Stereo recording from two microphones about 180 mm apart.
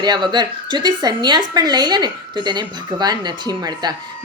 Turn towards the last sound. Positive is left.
turn(degrees=-20)  # may be behind; listen again after turning